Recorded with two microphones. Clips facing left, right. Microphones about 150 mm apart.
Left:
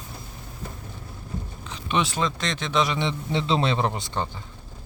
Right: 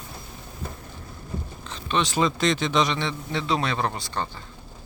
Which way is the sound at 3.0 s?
20° left (ahead or behind).